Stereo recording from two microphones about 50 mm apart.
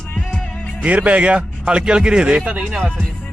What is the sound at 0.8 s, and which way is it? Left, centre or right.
Speech, right.